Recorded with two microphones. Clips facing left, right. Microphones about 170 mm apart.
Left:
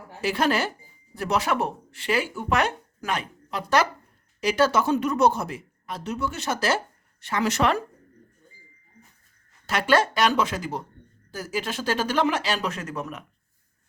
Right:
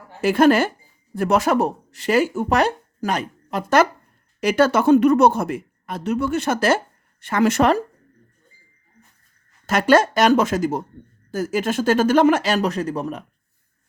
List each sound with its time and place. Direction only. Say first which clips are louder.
0.2 s speech: right 9 dB; 50° right (ahead or behind)
9.6 s speech: right 6 dB; 45° right (ahead or behind)